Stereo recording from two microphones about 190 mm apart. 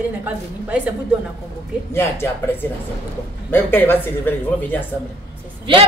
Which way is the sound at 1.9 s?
10° left (ahead or behind).